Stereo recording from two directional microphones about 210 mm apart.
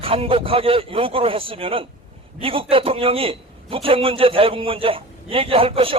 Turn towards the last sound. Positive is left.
turn(degrees=-25)  # may be behind; listen again after turning